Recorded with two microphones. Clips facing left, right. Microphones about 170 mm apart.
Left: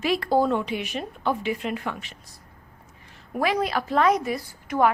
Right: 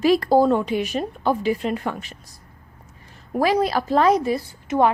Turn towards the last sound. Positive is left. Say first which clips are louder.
# right 3 dB
turn(degrees=-25)  # may be behind; listen again after turning